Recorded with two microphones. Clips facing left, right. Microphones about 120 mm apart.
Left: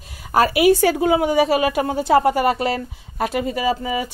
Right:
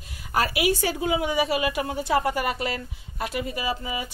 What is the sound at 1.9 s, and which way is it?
Speech, 35° left (ahead or behind).